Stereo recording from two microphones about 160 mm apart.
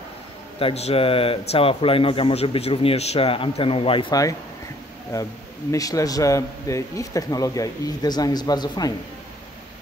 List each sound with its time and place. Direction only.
0.6 s a man's voice: 40° left (ahead or behind)